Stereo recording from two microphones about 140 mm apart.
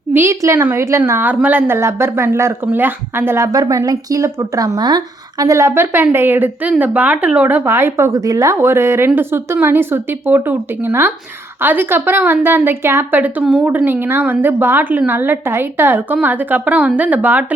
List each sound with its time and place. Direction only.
0.1 s a woman's voice: 20° right (ahead or behind)